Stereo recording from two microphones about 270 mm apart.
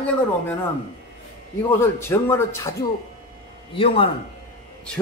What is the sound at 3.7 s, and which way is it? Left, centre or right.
Speech, centre.